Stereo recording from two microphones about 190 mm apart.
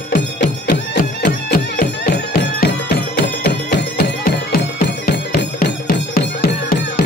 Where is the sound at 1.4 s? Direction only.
55° left (ahead or behind).